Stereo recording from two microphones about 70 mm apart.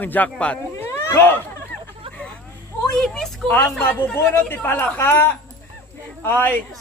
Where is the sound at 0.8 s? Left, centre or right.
Left.